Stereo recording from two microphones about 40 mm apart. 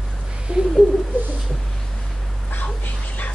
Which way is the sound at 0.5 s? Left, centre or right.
Right.